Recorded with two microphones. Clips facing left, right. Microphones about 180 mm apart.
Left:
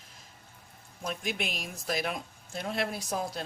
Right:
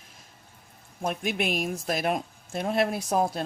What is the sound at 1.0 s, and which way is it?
Speech, 55° right (ahead or behind).